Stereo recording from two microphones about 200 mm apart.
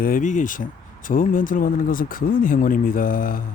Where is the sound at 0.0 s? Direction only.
40° left (ahead or behind).